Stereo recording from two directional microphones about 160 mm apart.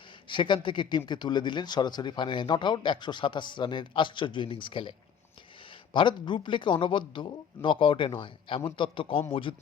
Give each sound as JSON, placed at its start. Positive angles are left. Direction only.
{"t": 0.3, "sound": "speech", "side_deg": 30}